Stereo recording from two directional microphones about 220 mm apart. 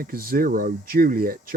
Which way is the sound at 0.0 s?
40° right (ahead or behind).